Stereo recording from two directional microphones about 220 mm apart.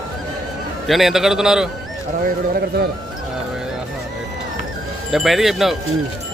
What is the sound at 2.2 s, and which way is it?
Speech, 45° right (ahead or behind).